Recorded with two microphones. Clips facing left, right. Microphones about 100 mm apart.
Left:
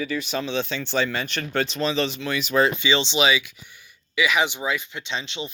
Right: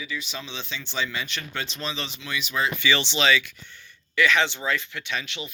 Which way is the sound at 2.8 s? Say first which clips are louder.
Left 2 dB; 20° left (ahead or behind).